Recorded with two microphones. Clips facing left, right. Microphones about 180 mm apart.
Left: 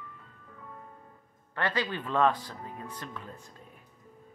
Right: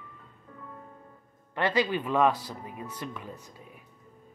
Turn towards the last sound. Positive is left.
turn(degrees=-10)  # may be behind; listen again after turning